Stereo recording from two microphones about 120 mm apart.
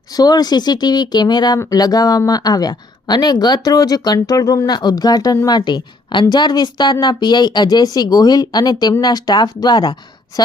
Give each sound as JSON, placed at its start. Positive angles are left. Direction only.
{"t": 0.1, "sound": "speech", "side_deg": 35}